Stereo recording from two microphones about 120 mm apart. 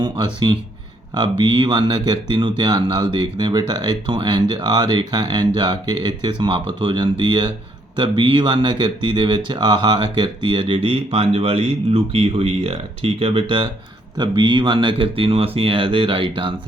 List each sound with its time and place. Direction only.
0.0 s speech: 40° right (ahead or behind)